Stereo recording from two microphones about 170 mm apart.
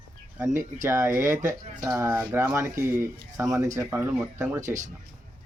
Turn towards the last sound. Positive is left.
turn(degrees=-45)  # may be behind; listen again after turning